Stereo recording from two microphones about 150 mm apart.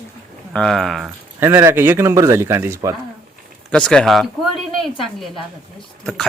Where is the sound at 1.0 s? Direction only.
15° right (ahead or behind).